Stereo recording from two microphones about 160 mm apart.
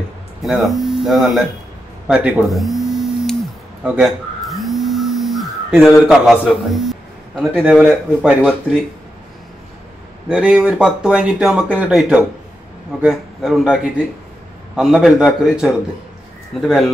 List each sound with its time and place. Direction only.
0.4 s speech: centre (ahead or behind)
2.0 s a sound: 5° right (ahead or behind)
3.8 s speech: 5° right (ahead or behind)
10.3 s speech: 5° right (ahead or behind)